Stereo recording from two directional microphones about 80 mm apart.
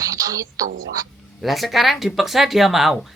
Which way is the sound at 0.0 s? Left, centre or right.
Right.